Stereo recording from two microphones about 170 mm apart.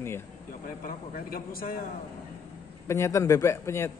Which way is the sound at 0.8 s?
55° left (ahead or behind).